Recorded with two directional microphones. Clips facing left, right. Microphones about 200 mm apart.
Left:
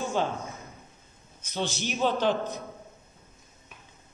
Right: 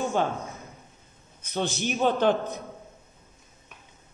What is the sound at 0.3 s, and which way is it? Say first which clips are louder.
Speech: right 1 dB; centre (ahead or behind).